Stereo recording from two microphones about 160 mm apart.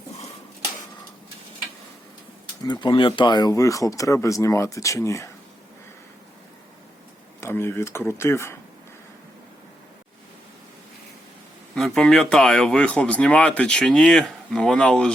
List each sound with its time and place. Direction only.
2.6 s speech: 30° left (ahead or behind)
7.4 s speech: 15° left (ahead or behind)
11.7 s speech: 5° left (ahead or behind)